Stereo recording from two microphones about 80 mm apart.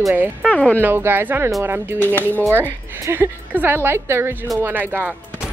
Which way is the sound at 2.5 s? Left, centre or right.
Right.